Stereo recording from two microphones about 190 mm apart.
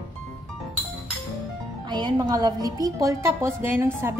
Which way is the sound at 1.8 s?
25° right (ahead or behind).